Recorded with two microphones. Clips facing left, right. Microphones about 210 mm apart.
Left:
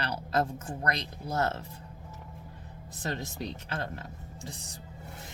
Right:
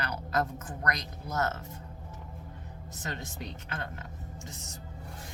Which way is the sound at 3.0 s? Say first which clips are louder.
Left 5 dB; 35° left (ahead or behind).